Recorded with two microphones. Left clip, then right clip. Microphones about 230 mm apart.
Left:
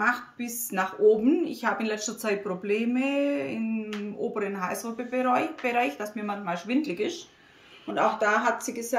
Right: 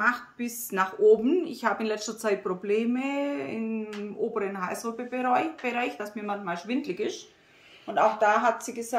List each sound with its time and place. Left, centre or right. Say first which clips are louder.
0.0 s speech: even; centre